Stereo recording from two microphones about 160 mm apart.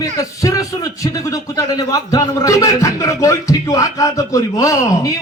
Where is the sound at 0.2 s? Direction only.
20° left (ahead or behind).